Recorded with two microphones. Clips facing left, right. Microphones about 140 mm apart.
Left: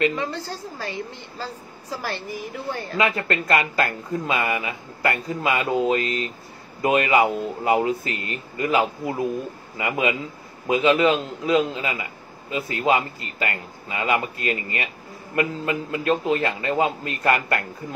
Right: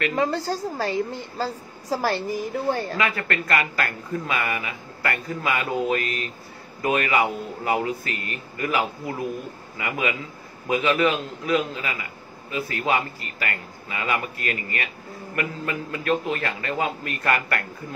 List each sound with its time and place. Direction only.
0.1 s a woman's voice: 45° right (ahead or behind)
3.0 s a man's voice: 25° left (ahead or behind)